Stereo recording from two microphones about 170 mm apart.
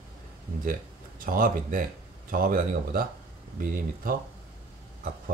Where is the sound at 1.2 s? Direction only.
55° right (ahead or behind).